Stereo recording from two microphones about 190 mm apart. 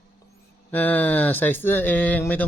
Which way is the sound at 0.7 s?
10° left (ahead or behind).